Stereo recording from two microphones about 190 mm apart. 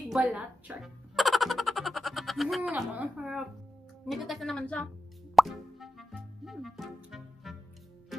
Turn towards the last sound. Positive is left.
turn(degrees=0)  # may be behind; listen again after turning